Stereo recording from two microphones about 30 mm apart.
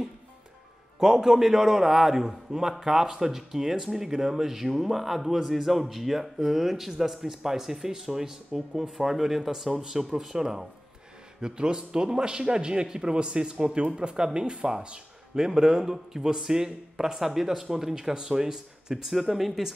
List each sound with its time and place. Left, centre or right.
0.9 s speech: centre
11.4 s a man's voice: right
15.3 s speech: centre
19.1 s speech: centre